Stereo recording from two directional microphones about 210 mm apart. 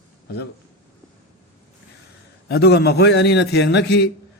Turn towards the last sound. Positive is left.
turn(degrees=55)  # may be behind; listen again after turning